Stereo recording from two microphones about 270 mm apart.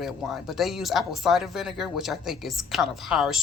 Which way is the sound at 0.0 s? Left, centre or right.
Centre.